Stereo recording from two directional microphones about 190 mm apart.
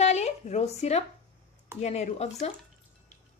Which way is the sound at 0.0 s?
35° left (ahead or behind).